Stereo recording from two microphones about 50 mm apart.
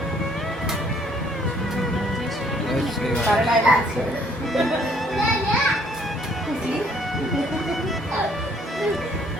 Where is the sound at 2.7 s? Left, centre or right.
Centre.